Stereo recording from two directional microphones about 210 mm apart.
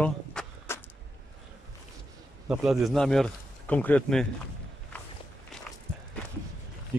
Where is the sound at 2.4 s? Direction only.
5° right (ahead or behind).